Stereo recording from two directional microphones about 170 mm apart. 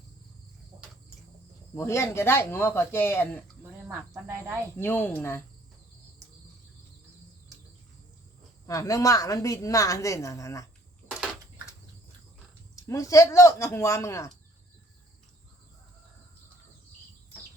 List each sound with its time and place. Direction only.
1.7 s speech: 15° left (ahead or behind)
4.1 s speech: 15° right (ahead or behind)
4.8 s speech: 10° left (ahead or behind)
8.6 s a woman's voice: 20° left (ahead or behind)
12.7 s speech: 20° left (ahead or behind)